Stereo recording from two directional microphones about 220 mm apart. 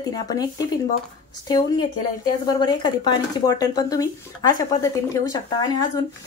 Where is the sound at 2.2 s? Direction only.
20° left (ahead or behind).